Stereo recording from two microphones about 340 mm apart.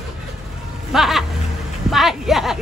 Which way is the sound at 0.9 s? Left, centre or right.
Centre.